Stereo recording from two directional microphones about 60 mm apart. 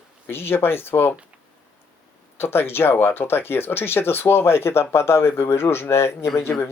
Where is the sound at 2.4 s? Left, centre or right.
Left.